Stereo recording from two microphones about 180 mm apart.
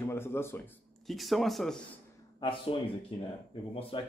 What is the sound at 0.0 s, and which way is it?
Speech, 15° left (ahead or behind).